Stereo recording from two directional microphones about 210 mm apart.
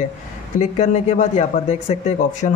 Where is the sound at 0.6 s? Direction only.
35° left (ahead or behind).